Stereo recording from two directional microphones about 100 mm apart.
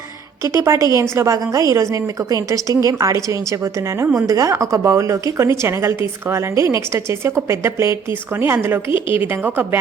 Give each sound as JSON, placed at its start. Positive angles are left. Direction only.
{"t": 0.6, "sound": "a woman's voice", "side_deg": -30}